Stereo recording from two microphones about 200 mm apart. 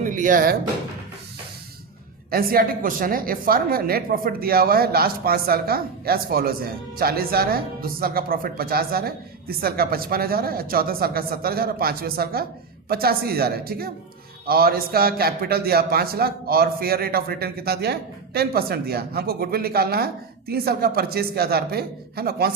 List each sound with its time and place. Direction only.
0.0 s speech: 40° right (ahead or behind)
2.3 s a woman's voice: 45° right (ahead or behind)